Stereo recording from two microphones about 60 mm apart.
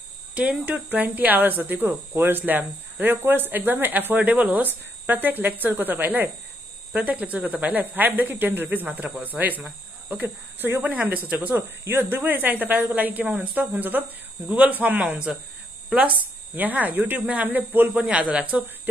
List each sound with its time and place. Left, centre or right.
0.3 s speech: right
10.2 s speech: right
11.8 s speech: right; by 15.3 s centre
16.5 s speech: right